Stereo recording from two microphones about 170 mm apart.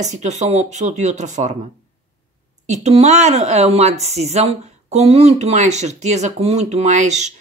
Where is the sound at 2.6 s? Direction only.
40° right (ahead or behind).